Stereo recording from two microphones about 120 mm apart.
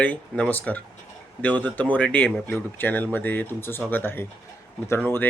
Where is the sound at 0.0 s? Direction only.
10° left (ahead or behind).